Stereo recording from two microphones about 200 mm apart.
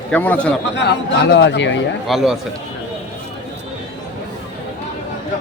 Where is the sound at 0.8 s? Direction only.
60° left (ahead or behind).